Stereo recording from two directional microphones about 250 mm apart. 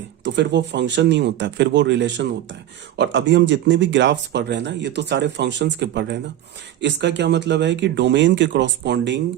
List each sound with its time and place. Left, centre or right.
0.3 s speech: right